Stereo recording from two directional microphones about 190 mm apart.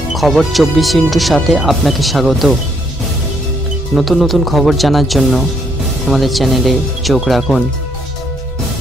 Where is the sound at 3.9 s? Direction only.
Centre (ahead or behind).